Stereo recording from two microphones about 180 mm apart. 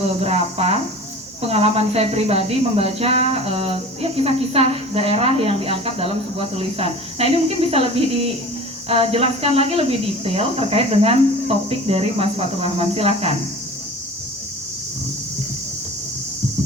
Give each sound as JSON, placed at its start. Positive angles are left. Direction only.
{"t": 0.0, "sound": "a woman's voice", "side_deg": -35}